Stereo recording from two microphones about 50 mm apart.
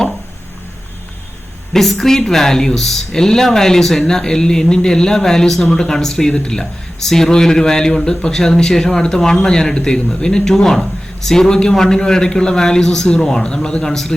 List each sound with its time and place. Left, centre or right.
1.7 s speech: centre